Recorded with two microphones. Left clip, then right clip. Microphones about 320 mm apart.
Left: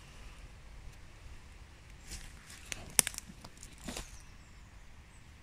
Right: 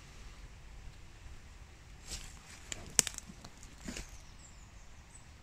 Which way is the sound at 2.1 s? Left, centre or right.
Centre.